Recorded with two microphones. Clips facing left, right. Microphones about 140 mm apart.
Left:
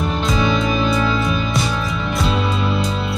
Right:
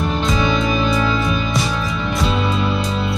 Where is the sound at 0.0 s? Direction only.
Centre (ahead or behind).